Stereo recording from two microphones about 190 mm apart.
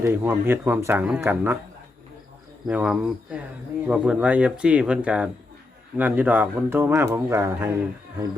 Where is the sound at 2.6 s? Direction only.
5° right (ahead or behind).